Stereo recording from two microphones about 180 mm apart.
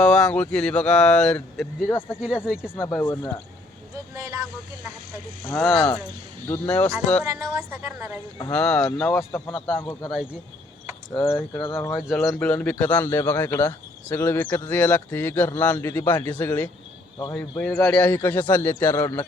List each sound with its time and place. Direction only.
0.0 s speech: 5° left (ahead or behind)
1.9 s speech: 15° left (ahead or behind)
2.2 s speech: 5° right (ahead or behind)
2.8 s speech: 10° left (ahead or behind)
4.1 s vehicle: 15° right (ahead or behind)
5.5 s speech: 5° left (ahead or behind)
7.3 s a woman's voice: 20° right (ahead or behind)
8.5 s speech: 5° left (ahead or behind)
9.5 s a man's voice: 25° left (ahead or behind)
9.7 s speech: 15° left (ahead or behind)
11.2 s speech: 15° left (ahead or behind)
11.5 s a man's voice: 25° left (ahead or behind)
11.8 s speech: 15° left (ahead or behind)
12.0 s speech: centre (ahead or behind)